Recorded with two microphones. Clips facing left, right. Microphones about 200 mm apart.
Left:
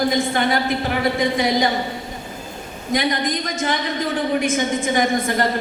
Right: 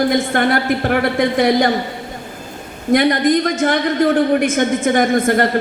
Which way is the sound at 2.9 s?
55° right (ahead or behind).